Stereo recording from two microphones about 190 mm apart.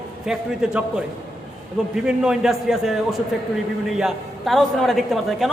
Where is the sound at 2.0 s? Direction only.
5° right (ahead or behind).